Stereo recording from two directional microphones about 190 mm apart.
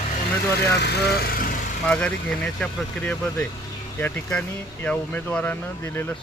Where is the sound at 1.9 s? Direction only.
5° left (ahead or behind).